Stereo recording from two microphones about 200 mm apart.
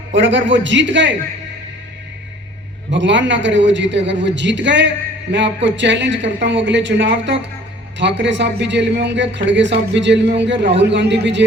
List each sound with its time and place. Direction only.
0.1 s a man's voice: 65° right (ahead or behind)
2.9 s a man's voice: 65° right (ahead or behind)